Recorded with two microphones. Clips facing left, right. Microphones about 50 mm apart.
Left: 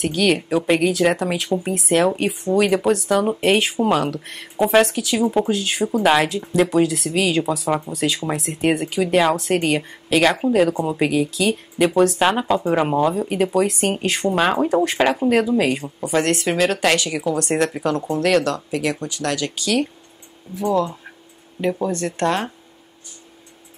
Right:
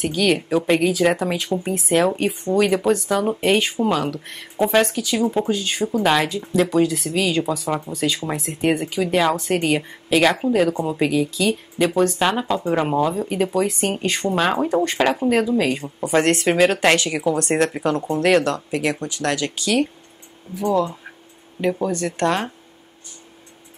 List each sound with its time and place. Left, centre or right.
0.0 s speech: centre
4.0 s speech: centre
16.2 s speech: right
16.4 s speech: right
21.6 s speech: right
21.9 s speech: left
22.2 s speech: right